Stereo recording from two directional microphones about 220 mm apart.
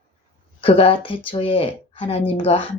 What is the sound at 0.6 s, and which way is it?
Speech, 25° left (ahead or behind).